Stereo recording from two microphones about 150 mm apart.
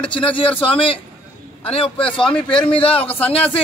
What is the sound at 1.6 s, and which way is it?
A man's voice, 40° left (ahead or behind).